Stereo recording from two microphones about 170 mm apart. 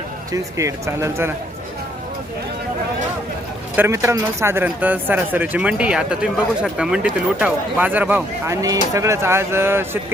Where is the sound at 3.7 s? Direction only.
15° right (ahead or behind).